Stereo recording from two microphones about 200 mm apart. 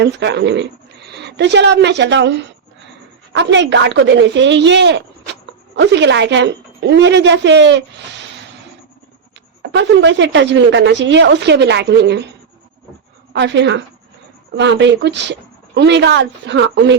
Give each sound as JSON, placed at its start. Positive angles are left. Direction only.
{"t": 0.0, "sound": "speech", "side_deg": -60}
{"t": 9.7, "sound": "speech", "side_deg": -60}
{"t": 13.3, "sound": "speech", "side_deg": -60}